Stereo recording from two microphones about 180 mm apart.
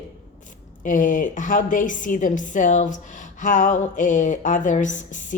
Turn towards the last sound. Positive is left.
turn(degrees=45)  # may be behind; listen again after turning